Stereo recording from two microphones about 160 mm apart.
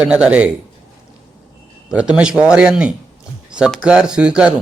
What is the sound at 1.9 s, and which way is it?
A man's voice, 5° right (ahead or behind).